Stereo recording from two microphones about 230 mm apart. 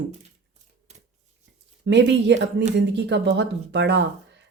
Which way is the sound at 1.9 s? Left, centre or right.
Right.